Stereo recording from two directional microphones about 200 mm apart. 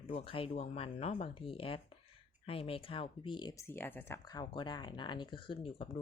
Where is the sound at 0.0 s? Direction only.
30° left (ahead or behind).